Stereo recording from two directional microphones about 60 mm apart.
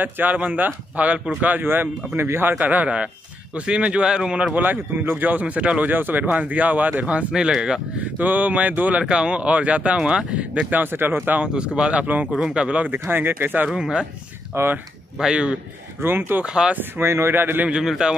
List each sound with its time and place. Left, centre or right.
0.0 s a man's voice: right
4.6 s speech: right; by 7.8 s centre
8.2 s speech: right
9.0 s speech: centre; by 11.4 s right
11.4 s speech: centre
12.4 s speech: centre
12.9 s a man's voice: right
13.7 s speech: centre
14.5 s speech: right
15.1 s speech: centre
16.0 s a man's voice: right
16.4 s speech: centre
16.7 s a man's voice: right
17.6 s speech: centre